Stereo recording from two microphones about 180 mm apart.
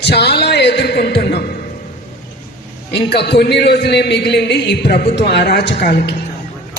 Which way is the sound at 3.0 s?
65° left (ahead or behind).